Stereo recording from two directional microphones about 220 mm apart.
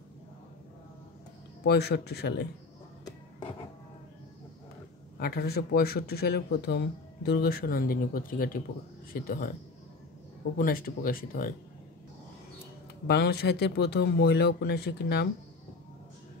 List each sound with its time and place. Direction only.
1.6 s speech: 50° left (ahead or behind)
3.1 s music: 15° left (ahead or behind)
5.1 s speech: 45° left (ahead or behind)
10.6 s speech: 40° left (ahead or behind)
13.0 s speech: 45° left (ahead or behind)